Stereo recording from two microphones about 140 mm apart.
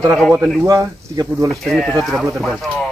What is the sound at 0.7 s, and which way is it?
Speech, 25° right (ahead or behind).